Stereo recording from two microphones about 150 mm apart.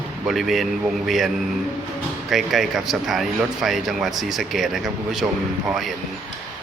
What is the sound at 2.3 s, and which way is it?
Speech, centre (ahead or behind).